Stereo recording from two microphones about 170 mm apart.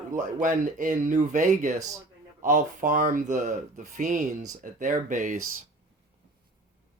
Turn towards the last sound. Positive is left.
turn(degrees=-50)  # may be behind; listen again after turning